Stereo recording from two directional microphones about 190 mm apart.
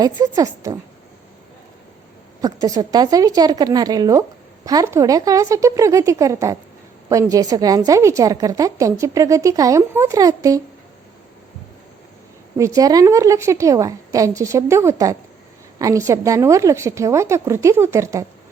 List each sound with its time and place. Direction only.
0.0 s a woman's voice: 20° right (ahead or behind)
2.4 s a woman's voice: 20° right (ahead or behind)
12.5 s a woman's voice: 15° right (ahead or behind)